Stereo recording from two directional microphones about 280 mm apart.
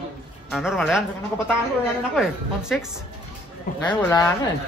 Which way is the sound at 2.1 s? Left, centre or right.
Centre.